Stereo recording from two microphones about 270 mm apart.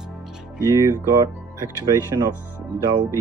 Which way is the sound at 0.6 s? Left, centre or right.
Centre.